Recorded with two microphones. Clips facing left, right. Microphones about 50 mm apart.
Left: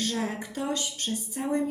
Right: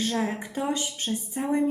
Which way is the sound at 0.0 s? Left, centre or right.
Right.